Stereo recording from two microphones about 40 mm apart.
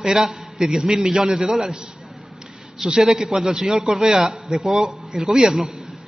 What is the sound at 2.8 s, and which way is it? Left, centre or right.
A man's voice, centre.